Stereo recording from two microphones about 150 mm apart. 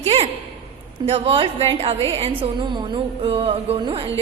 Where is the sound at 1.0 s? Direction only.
40° right (ahead or behind).